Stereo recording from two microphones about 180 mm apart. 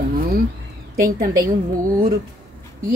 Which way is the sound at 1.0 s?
50° right (ahead or behind).